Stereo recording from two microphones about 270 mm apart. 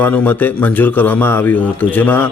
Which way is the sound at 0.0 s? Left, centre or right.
Centre.